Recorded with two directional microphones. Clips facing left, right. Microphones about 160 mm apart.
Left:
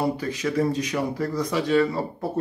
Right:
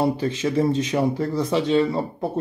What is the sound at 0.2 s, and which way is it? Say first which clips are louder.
Speech: right 3 dB; 25° right (ahead or behind).